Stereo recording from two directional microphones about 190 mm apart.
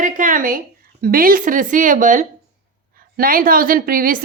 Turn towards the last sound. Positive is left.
turn(degrees=-50)  # may be behind; listen again after turning